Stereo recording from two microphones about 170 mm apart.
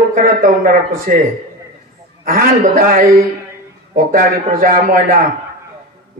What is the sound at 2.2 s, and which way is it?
A man's voice, 55° right (ahead or behind).